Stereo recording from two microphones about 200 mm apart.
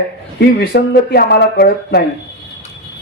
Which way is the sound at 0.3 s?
55° left (ahead or behind).